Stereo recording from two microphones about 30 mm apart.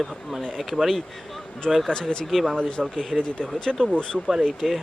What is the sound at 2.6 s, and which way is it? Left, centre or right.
Speech, left.